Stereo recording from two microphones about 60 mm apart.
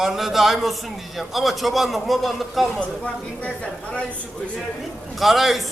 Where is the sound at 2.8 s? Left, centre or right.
Centre.